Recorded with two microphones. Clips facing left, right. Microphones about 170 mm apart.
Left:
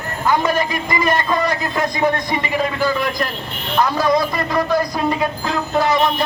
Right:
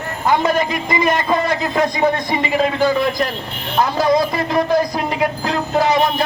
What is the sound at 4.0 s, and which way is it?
Speech, 25° right (ahead or behind).